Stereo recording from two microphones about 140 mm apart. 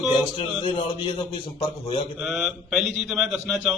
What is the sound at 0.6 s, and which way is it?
Speech, 40° left (ahead or behind).